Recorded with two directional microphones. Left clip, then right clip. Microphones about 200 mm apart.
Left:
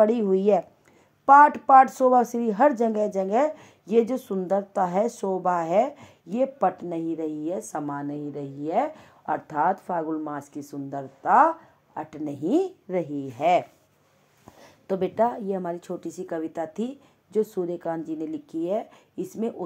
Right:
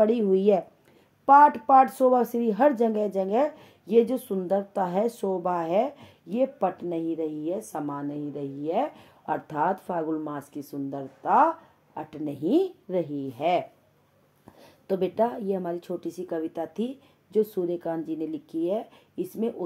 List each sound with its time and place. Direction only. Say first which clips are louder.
0.0 s a woman's voice: left 1 dB; 20° left (ahead or behind)
1.2 s a woman's voice: left 2 dB; 25° left (ahead or behind)